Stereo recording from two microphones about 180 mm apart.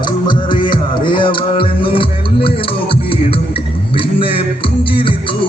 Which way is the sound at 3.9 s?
30° left (ahead or behind).